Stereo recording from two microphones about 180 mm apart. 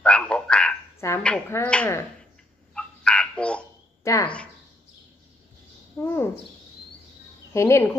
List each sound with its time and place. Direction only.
0.0 s frog: 5° left (ahead or behind)
2.7 s a sound: 5° left (ahead or behind)
4.0 s speech: 15° left (ahead or behind)
6.0 s speech: 15° left (ahead or behind)
7.5 s speech: 15° left (ahead or behind)